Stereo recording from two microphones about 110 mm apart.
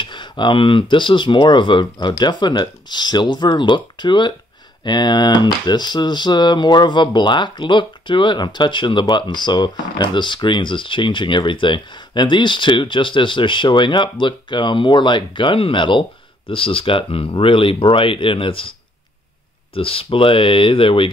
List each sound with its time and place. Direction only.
0.0 s speech: 45° left (ahead or behind)
19.7 s speech: 55° left (ahead or behind)